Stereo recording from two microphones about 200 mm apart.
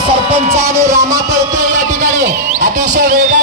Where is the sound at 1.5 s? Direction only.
40° right (ahead or behind).